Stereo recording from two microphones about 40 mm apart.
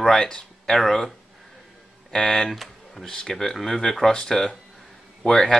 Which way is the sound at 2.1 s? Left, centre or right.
Centre.